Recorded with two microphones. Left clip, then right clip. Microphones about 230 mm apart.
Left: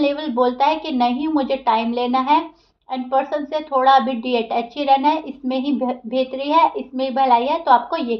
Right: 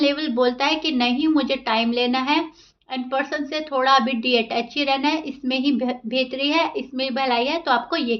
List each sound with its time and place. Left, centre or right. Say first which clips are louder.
0.0 s a woman's voice: left 1 dB; right